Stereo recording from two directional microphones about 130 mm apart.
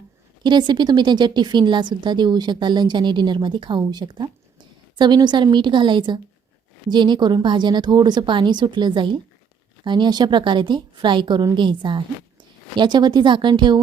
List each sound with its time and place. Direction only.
0.4 s a woman's voice: 35° right (ahead or behind)